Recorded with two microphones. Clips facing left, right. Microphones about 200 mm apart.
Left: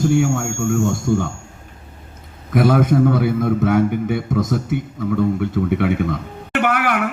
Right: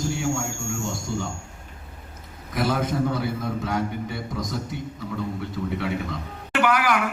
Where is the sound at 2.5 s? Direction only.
55° left (ahead or behind).